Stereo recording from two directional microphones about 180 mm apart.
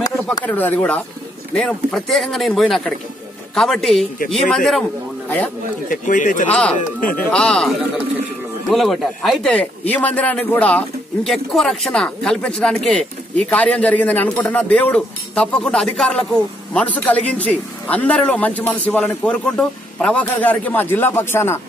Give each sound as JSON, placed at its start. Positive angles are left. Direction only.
{"t": 0.0, "sound": "a sound", "side_deg": 20}
{"t": 0.5, "sound": "a man's voice", "side_deg": 10}
{"t": 5.9, "sound": "speech", "side_deg": 45}
{"t": 7.2, "sound": "a man's voice", "side_deg": 5}